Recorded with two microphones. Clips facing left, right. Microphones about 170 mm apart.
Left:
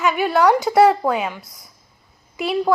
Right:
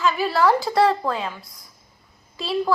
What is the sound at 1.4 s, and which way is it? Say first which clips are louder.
Speech: left 2 dB; centre (ahead or behind).